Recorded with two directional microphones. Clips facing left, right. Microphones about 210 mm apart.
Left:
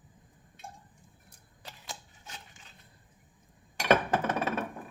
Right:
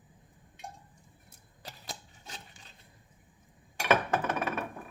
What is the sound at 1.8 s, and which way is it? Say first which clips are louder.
Rub: even; 35° right (ahead or behind).